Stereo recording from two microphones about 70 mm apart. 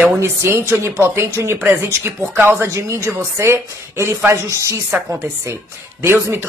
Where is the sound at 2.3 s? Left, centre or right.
Right.